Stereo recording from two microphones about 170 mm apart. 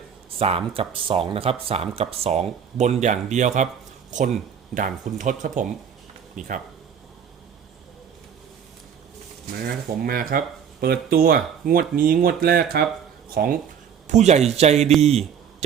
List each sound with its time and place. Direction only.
0.3 s speech: 35° right (ahead or behind)
4.7 s speech: 50° right (ahead or behind)
9.5 s speech: 60° right (ahead or behind)
14.1 s speech: 40° right (ahead or behind)